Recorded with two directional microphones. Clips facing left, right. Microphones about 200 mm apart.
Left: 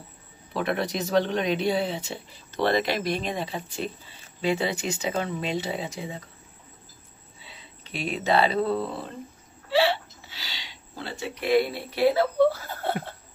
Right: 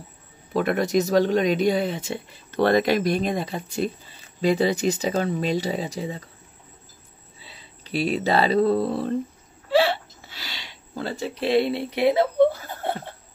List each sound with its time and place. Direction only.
0.5 s speech: 45° right (ahead or behind)
7.4 s speech: 35° right (ahead or behind)
9.7 s a sound: 50° right (ahead or behind)
11.3 s speech: 25° right (ahead or behind)